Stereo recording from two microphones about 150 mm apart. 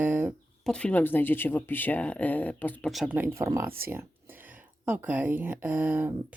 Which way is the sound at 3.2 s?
20° right (ahead or behind).